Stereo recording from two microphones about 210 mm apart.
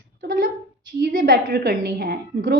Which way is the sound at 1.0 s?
45° right (ahead or behind).